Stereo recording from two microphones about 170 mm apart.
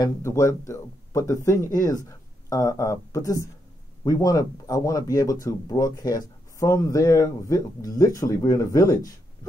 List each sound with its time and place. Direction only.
0.0 s speech: 15° left (ahead or behind)